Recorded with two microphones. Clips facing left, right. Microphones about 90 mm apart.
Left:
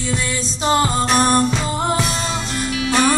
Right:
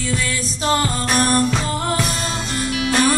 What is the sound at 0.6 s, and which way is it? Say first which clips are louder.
Music: left 3 dB; 20° left (ahead or behind).